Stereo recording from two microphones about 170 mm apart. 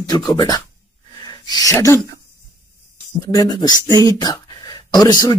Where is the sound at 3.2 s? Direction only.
20° left (ahead or behind).